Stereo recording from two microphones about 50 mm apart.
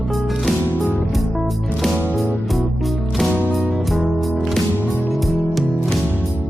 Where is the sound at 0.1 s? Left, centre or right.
Centre.